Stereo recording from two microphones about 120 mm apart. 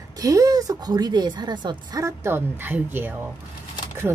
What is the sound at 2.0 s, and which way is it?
A woman's voice, 20° right (ahead or behind).